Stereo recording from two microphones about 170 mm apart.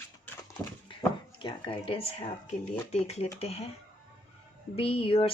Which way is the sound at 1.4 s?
30° left (ahead or behind).